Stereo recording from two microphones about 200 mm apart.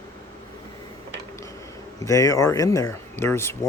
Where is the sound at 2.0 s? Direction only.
15° left (ahead or behind).